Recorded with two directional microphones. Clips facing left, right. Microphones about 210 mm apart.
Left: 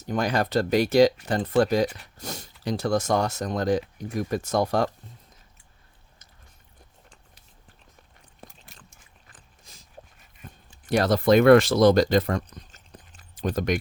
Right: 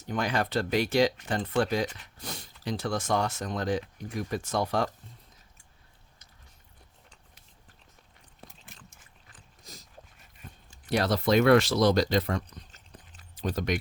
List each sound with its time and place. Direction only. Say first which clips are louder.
0.0 s speech: left 4 dB; 40° left (ahead or behind)
10.4 s a sound: left 3 dB; 50° left (ahead or behind)
10.8 s speech: left 6 dB; 45° left (ahead or behind)